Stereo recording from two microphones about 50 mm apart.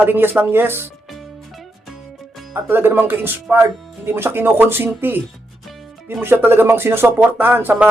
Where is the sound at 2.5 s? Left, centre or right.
Right.